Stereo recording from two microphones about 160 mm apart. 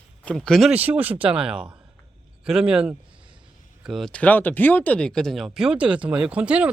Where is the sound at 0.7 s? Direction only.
10° right (ahead or behind).